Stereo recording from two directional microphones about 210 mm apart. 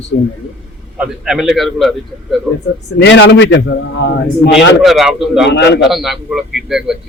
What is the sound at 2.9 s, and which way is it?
A man's voice, 55° left (ahead or behind).